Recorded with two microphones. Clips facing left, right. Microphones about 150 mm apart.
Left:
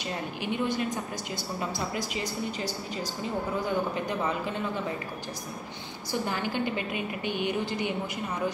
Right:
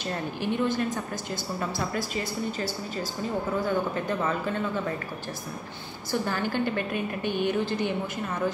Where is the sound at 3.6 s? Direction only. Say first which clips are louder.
Right 2 dB; 15° left (ahead or behind).